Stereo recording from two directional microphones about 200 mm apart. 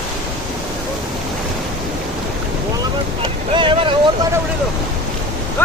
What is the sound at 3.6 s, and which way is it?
Vehicle, 25° right (ahead or behind).